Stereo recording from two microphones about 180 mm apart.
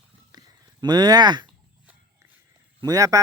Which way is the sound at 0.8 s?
25° right (ahead or behind).